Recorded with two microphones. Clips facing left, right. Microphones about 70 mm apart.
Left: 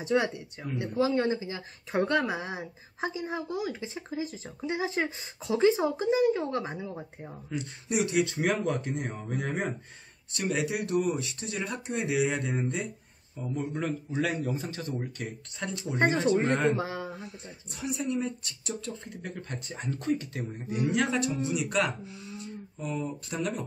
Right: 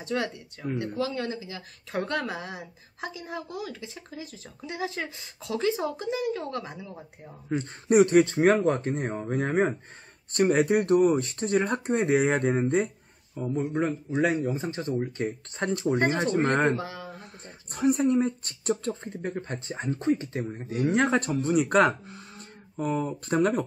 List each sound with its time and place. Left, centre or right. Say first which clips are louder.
0.0 s speech: left 3 dB; centre
7.4 s speech: right 8 dB; right
10.3 s speech: right 8 dB; right
14.2 s speech: right 5 dB; right
16.7 s a sound: left 1 dB; left
17.7 s speech: right 9 dB; right